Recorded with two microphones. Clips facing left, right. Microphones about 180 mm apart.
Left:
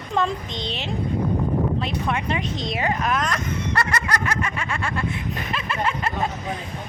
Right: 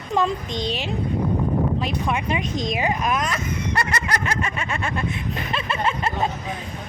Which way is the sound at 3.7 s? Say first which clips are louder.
Left 1 dB; 20° right (ahead or behind).